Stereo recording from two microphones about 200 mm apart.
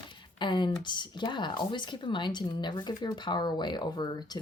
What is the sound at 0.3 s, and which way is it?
Speech, 25° left (ahead or behind).